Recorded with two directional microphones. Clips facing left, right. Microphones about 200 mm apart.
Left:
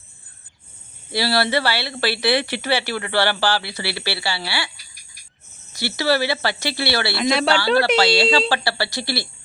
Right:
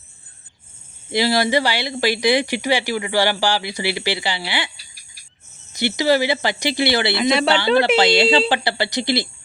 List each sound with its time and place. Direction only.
1.1 s speech: 15° right (ahead or behind)
5.7 s speech: 20° right (ahead or behind)
7.2 s speech: centre (ahead or behind)
7.9 s speech: 20° right (ahead or behind)